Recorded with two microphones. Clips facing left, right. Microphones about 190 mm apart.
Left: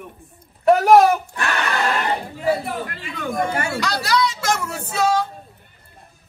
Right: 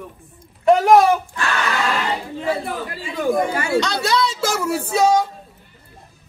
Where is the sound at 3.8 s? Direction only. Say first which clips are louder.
Right 1 dB; 25° right (ahead or behind).